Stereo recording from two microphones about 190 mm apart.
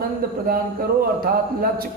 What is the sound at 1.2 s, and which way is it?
Speech, 50° right (ahead or behind).